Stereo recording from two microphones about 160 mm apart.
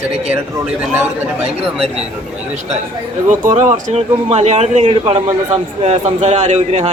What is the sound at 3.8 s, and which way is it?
Speech, 40° right (ahead or behind).